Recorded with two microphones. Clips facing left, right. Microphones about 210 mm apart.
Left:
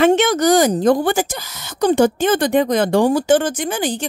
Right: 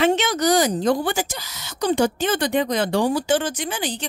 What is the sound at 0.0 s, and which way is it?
Speech, 50° left (ahead or behind).